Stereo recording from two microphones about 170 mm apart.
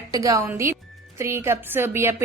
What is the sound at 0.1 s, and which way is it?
A woman's voice, 20° right (ahead or behind).